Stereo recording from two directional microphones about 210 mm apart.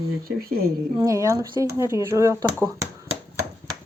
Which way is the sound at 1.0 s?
15° right (ahead or behind).